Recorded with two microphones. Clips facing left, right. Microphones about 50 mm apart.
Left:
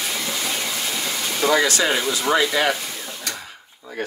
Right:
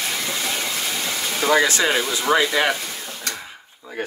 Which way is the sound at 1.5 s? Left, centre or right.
Right.